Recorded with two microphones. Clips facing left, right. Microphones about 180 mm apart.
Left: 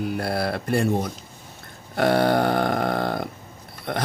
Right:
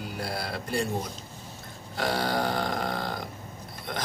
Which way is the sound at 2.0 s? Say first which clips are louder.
Left 8 dB; 60° left (ahead or behind).